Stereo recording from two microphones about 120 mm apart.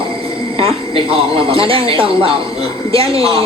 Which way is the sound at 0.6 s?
50° right (ahead or behind).